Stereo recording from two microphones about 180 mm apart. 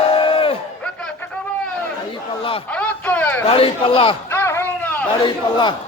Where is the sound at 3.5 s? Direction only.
30° left (ahead or behind).